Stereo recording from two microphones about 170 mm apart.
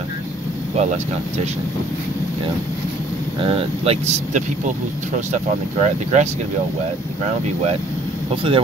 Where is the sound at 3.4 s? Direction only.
35° right (ahead or behind).